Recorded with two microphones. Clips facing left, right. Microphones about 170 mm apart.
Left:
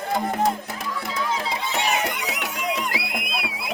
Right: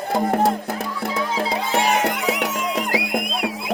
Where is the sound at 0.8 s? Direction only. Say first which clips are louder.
Right 4 dB; 35° right (ahead or behind).